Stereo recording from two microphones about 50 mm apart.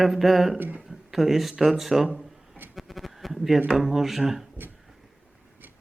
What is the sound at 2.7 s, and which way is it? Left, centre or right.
Bleat, centre.